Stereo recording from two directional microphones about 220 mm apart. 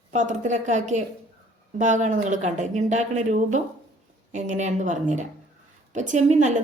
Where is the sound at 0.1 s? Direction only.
35° right (ahead or behind).